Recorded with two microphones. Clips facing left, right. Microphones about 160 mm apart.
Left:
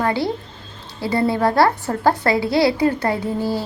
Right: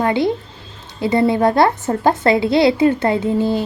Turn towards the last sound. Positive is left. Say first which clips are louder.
# right 5 dB
turn(degrees=-20)  # may be behind; listen again after turning